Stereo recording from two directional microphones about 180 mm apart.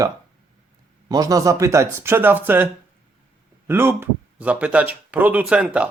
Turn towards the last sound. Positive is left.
turn(degrees=-5)  # may be behind; listen again after turning